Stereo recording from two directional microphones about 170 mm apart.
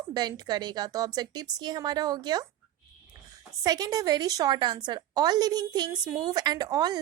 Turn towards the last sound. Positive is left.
turn(degrees=-20)  # may be behind; listen again after turning